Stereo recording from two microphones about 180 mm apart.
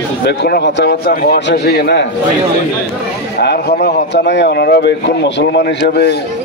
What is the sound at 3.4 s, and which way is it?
Speech, 65° left (ahead or behind).